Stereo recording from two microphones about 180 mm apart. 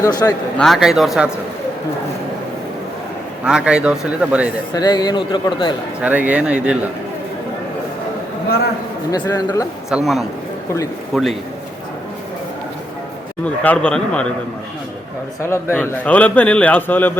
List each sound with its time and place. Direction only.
0.0 s speech: 20° left (ahead or behind)
0.6 s a man's voice: centre (ahead or behind)
3.4 s a man's voice: 5° right (ahead or behind)
4.7 s speech: 20° left (ahead or behind)
6.0 s a man's voice: 10° right (ahead or behind)
9.1 s speech: 20° left (ahead or behind)
9.9 s a man's voice: centre (ahead or behind)
13.4 s a man's voice: 5° left (ahead or behind)
15.4 s a man's voice: 15° left (ahead or behind)